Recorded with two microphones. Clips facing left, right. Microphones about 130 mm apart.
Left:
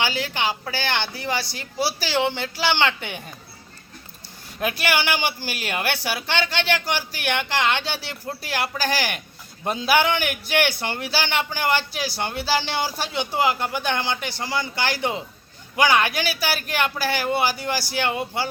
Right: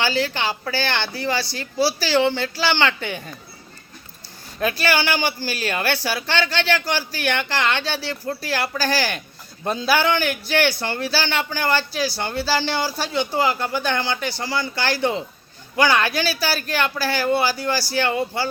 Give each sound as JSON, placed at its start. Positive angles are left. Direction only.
{"t": 0.0, "sound": "a man's voice", "side_deg": 15}
{"t": 4.6, "sound": "a man's voice", "side_deg": 20}